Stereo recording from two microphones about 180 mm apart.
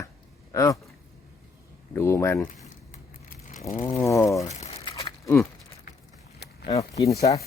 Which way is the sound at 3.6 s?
15° left (ahead or behind).